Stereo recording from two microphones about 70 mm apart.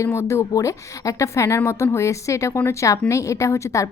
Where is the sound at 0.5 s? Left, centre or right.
Left.